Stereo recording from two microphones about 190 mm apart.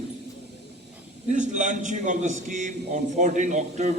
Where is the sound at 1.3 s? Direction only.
40° right (ahead or behind).